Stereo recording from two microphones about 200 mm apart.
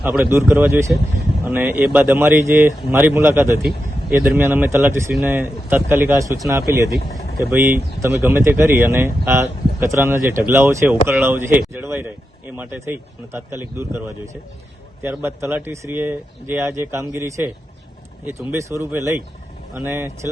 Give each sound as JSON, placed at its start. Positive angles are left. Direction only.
{"t": 0.0, "sound": "speech", "side_deg": -5}
{"t": 7.0, "sound": "vehicle", "side_deg": 50}
{"t": 8.0, "sound": "speech", "side_deg": -10}
{"t": 15.0, "sound": "speech", "side_deg": -10}